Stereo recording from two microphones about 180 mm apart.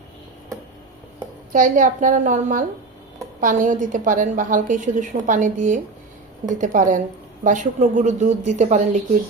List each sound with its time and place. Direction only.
1.5 s a woman's voice: 45° right (ahead or behind)